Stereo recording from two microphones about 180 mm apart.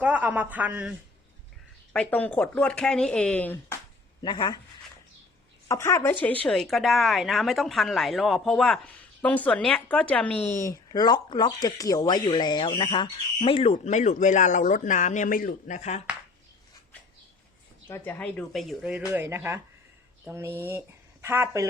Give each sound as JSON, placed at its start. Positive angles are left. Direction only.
{"t": 0.0, "sound": "a man's voice", "side_deg": -10}
{"t": 1.9, "sound": "speech", "side_deg": 5}
{"t": 4.2, "sound": "a woman's voice", "side_deg": 25}
{"t": 5.6, "sound": "a woman's voice", "side_deg": 15}
{"t": 13.7, "sound": "speech", "side_deg": 40}
{"t": 17.8, "sound": "a woman's voice", "side_deg": 15}